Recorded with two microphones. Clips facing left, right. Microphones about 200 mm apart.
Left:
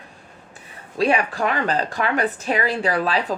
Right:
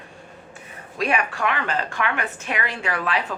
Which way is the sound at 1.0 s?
30° left (ahead or behind).